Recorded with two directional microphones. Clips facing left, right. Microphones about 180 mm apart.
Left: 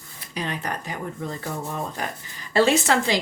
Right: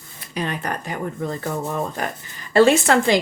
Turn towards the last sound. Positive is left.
turn(degrees=-55)  # may be behind; listen again after turning